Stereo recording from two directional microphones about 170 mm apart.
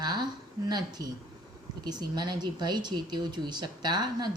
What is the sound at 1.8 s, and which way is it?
Speech, 25° right (ahead or behind).